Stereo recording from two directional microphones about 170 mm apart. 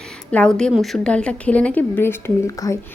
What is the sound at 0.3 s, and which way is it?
A woman's voice, 5° left (ahead or behind).